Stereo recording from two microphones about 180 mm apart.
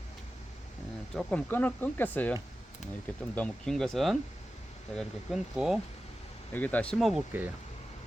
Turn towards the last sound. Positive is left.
turn(degrees=-10)  # may be behind; listen again after turning